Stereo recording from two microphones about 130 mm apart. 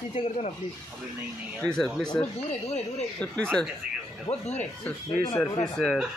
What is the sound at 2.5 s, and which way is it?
Speech, 55° left (ahead or behind).